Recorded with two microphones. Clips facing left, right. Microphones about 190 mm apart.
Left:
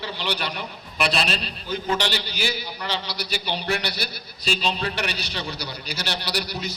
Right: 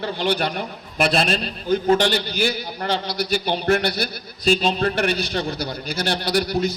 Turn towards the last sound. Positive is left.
turn(degrees=-50)  # may be behind; listen again after turning